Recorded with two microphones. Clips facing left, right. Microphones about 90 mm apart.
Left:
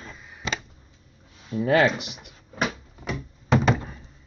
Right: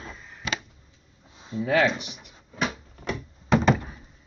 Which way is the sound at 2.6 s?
Centre (ahead or behind).